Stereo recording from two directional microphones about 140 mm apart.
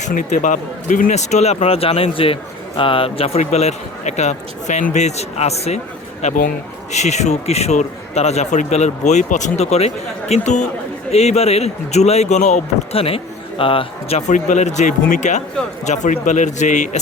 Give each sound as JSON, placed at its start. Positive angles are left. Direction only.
{"t": 0.0, "sound": "speech", "side_deg": 65}
{"t": 14.2, "sound": "speech", "side_deg": 60}